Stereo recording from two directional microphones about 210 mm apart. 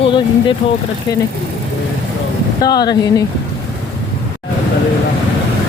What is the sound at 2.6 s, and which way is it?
Speech, 20° left (ahead or behind).